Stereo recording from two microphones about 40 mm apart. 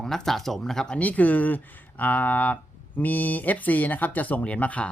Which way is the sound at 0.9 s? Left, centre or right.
Left.